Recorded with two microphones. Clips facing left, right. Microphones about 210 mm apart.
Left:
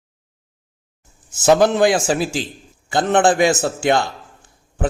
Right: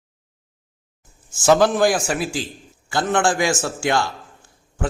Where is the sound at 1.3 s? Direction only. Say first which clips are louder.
Left 2 dB; 20° left (ahead or behind).